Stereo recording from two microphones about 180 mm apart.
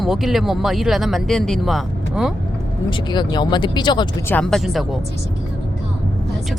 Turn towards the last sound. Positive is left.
turn(degrees=0)  # may be behind; listen again after turning